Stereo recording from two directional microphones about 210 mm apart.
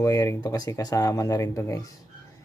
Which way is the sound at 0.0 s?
15° left (ahead or behind).